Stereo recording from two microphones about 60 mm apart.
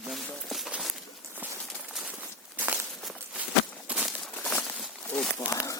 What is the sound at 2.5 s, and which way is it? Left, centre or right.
Walk, right.